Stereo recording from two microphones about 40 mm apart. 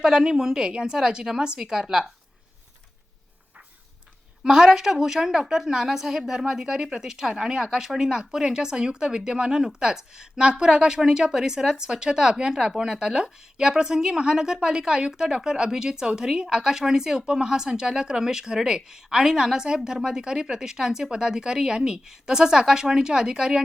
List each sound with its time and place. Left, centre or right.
0.0 s speech: centre
4.4 s speech: centre